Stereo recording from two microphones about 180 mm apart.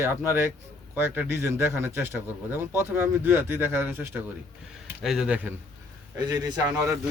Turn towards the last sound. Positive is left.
turn(degrees=-15)  # may be behind; listen again after turning